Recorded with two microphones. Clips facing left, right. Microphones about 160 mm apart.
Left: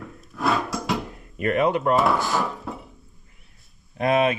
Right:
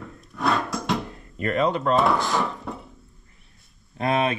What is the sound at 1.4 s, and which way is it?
Speech, 15° left (ahead or behind).